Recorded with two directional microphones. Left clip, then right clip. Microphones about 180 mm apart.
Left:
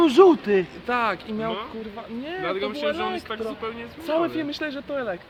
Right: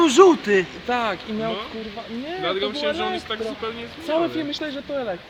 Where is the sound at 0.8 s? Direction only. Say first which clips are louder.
Right 1 dB; 5° left (ahead or behind).